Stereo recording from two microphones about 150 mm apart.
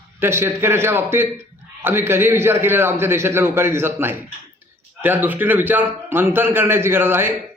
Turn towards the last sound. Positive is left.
turn(degrees=-15)  # may be behind; listen again after turning